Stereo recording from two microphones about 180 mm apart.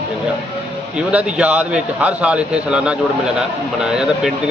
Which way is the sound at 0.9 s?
5° right (ahead or behind).